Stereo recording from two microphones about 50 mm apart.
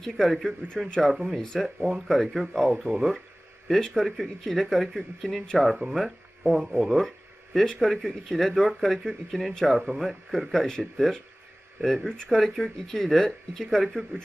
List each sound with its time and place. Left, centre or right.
0.0 s speech: centre
1.1 s speech: centre
2.9 s speech: right
3.7 s speech: centre
12.0 s speech: centre